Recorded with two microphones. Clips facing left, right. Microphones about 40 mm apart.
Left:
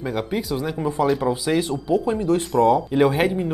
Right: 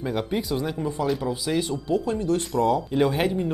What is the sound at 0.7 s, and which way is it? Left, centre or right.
Speech, left.